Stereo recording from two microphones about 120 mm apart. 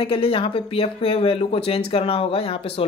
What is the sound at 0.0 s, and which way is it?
Speech, 50° left (ahead or behind).